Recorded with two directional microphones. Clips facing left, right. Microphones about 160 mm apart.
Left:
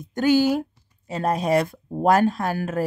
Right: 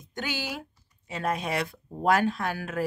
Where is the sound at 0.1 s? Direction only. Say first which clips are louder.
Left 15 dB; 45° left (ahead or behind).